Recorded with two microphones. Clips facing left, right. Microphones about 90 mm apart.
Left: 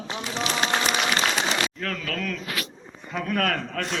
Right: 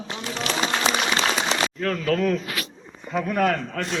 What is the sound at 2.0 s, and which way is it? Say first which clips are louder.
Speech: right 9 dB; 20° right (ahead or behind).